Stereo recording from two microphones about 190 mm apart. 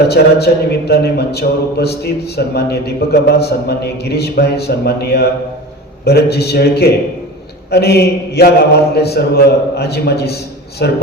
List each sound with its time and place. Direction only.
0.1 s speech: 55° left (ahead or behind)